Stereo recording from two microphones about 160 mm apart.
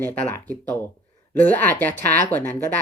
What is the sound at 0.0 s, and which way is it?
Speech, 10° left (ahead or behind).